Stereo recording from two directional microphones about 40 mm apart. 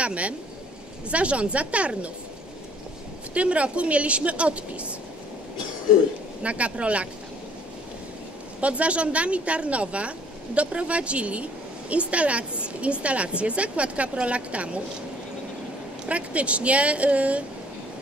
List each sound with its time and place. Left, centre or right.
0.0 s a woman's voice: right
3.3 s a woman's voice: right
6.4 s a woman's voice: right
8.5 s a woman's voice: right
16.1 s a woman's voice: right